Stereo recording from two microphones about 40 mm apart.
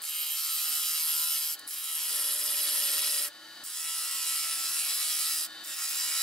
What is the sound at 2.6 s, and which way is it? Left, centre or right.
Tools, centre.